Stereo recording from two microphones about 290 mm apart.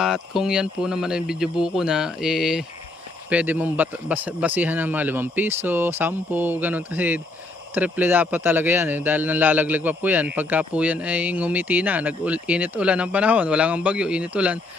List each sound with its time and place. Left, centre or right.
0.0 s speech: centre